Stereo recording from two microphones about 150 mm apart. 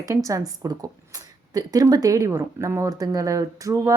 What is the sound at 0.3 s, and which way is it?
Speech, 20° right (ahead or behind).